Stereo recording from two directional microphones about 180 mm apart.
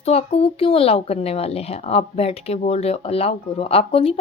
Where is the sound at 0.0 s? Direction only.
35° left (ahead or behind).